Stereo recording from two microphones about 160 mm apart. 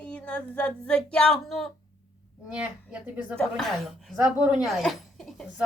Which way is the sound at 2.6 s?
5° right (ahead or behind).